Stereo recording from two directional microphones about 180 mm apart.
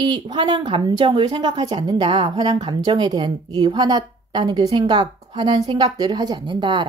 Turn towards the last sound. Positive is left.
turn(degrees=-25)  # may be behind; listen again after turning